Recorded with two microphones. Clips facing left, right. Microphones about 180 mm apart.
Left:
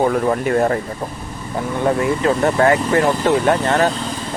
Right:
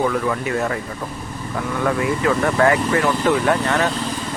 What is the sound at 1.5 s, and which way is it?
Speech, 30° left (ahead or behind).